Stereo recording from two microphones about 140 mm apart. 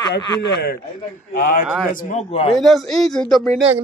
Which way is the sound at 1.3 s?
75° left (ahead or behind).